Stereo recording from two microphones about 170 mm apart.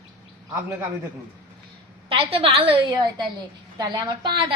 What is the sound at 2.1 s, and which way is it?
A woman's voice, 35° right (ahead or behind).